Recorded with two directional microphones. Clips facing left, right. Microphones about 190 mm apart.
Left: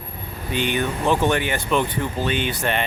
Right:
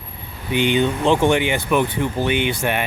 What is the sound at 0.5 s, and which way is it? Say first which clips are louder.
Speech: right 5 dB; 20° right (ahead or behind).